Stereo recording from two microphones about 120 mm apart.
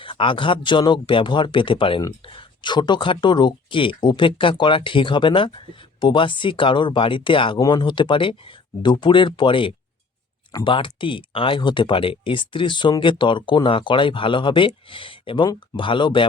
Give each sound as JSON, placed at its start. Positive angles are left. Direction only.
{"t": 0.0, "sound": "speech", "side_deg": 45}